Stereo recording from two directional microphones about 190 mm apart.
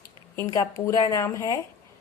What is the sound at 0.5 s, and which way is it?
A woman's voice, 15° left (ahead or behind).